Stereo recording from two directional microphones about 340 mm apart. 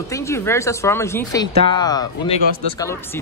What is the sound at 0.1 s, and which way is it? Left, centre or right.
Speech, centre.